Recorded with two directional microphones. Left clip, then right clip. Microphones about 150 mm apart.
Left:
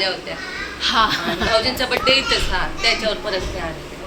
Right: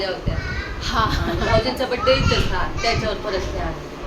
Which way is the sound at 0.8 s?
5° left (ahead or behind).